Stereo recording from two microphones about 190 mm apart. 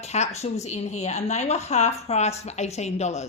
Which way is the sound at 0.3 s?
35° left (ahead or behind).